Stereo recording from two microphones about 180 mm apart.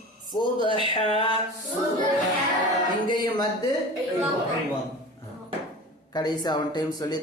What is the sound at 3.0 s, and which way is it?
Speech, 25° left (ahead or behind).